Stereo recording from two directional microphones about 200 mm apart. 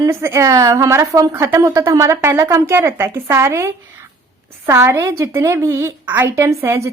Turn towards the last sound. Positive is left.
turn(degrees=-15)  # may be behind; listen again after turning